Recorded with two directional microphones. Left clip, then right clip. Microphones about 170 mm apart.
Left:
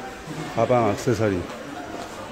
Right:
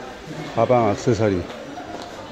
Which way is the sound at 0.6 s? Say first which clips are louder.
Right 3 dB; 10° right (ahead or behind).